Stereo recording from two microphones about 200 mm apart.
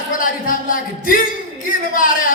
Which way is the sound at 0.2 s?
45° left (ahead or behind).